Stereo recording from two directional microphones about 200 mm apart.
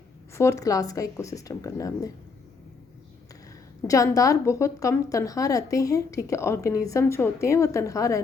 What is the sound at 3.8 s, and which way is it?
A woman's voice, 15° left (ahead or behind).